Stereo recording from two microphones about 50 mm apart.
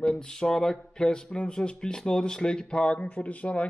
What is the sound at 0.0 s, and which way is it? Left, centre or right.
Speech, centre.